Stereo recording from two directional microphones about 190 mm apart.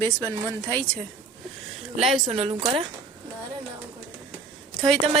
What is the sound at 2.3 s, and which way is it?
Speech, 30° right (ahead or behind).